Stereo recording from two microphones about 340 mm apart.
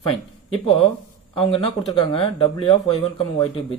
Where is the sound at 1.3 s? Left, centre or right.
Centre.